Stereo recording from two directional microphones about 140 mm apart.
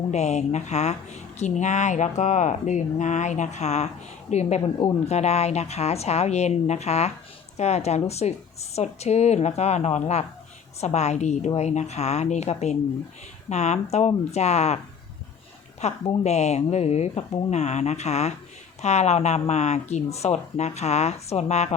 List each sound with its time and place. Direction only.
0.1 s speech: 55° left (ahead or behind)
15.8 s speech: 50° left (ahead or behind)